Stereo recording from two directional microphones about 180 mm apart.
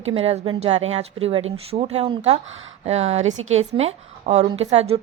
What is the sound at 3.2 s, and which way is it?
Speech, 90° right.